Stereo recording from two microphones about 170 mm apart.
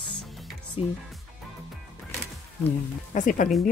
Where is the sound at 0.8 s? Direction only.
35° left (ahead or behind).